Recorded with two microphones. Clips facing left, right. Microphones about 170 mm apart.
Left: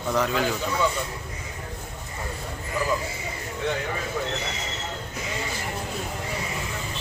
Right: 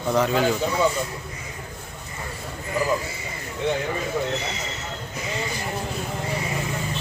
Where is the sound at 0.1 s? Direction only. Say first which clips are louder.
Right 3 dB; centre (ahead or behind).